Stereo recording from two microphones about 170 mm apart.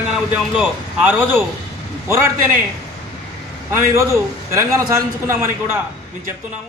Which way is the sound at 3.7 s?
15° right (ahead or behind).